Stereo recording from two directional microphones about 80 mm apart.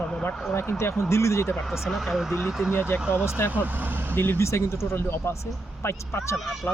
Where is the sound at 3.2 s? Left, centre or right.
Left.